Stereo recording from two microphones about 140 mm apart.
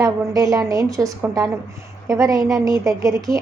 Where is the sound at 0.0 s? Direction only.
25° right (ahead or behind).